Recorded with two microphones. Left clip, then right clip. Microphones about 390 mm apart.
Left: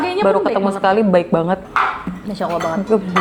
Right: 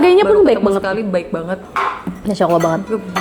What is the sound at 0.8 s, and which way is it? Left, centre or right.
Speech, left.